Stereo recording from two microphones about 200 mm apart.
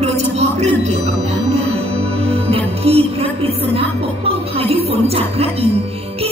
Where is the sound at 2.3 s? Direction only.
30° right (ahead or behind).